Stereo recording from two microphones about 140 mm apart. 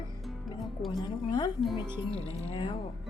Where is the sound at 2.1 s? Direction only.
45° left (ahead or behind).